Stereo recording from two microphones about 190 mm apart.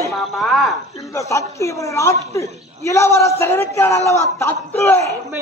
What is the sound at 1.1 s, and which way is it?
A man's voice, 15° left (ahead or behind).